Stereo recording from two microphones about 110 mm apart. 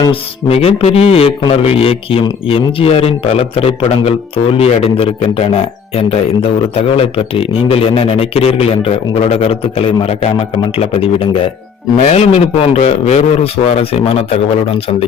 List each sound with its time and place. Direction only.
0.1 s a man's voice: 65° left (ahead or behind)